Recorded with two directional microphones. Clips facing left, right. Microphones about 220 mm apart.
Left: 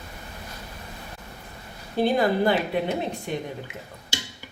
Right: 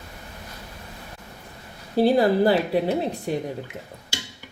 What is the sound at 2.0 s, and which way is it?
A woman's voice, 35° right (ahead or behind).